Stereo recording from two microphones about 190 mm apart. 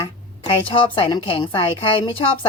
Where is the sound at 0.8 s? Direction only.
25° left (ahead or behind).